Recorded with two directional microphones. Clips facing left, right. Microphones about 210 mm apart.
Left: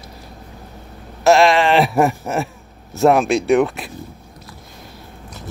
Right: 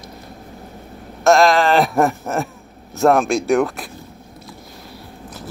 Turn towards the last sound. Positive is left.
turn(degrees=0)  # may be behind; listen again after turning